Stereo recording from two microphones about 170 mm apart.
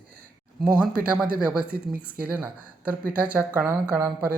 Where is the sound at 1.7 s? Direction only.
60° right (ahead or behind).